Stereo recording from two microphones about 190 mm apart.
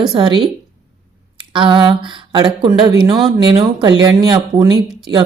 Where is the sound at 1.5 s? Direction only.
25° right (ahead or behind).